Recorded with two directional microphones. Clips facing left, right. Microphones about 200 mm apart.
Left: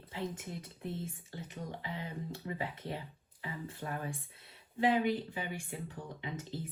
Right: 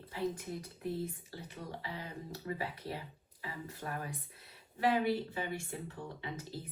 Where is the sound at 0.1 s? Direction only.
25° left (ahead or behind).